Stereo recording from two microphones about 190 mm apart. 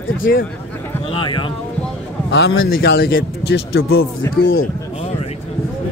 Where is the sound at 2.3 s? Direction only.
65° left (ahead or behind).